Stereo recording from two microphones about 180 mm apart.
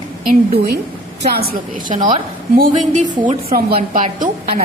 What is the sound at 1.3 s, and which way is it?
A woman's voice, 50° right (ahead or behind).